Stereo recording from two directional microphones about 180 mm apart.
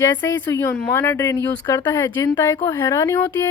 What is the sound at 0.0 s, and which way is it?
Speech, 15° left (ahead or behind).